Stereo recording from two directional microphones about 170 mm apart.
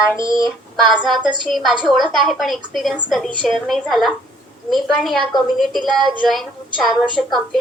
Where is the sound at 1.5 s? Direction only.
Centre (ahead or behind).